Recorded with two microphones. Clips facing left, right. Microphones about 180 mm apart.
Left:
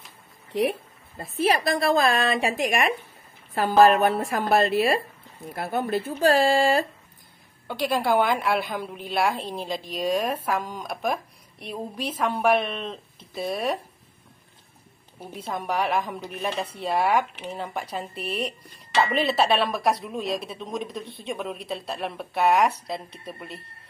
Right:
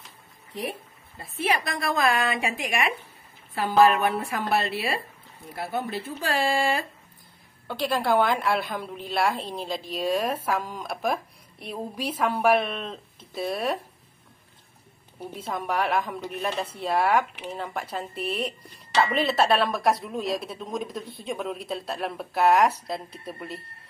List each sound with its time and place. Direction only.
0.6 s a sound: 75° left (ahead or behind)
1.2 s a woman's voice: 40° left (ahead or behind)
7.6 s speech: centre (ahead or behind)
15.3 s speech: centre (ahead or behind)